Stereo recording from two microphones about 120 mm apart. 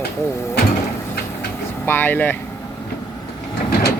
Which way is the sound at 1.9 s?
15° left (ahead or behind).